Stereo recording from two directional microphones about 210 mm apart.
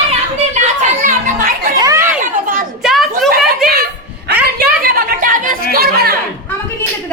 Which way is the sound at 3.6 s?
45° right (ahead or behind).